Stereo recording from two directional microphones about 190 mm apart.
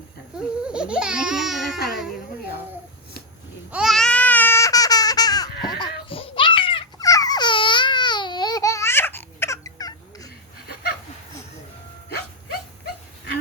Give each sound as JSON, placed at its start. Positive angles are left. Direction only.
{"t": 0.3, "sound": "baby cry", "side_deg": -5}
{"t": 3.7, "sound": "babbling", "side_deg": 0}
{"t": 12.1, "sound": "dog", "side_deg": 55}